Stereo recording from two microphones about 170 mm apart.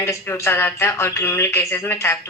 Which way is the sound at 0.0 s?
15° left (ahead or behind).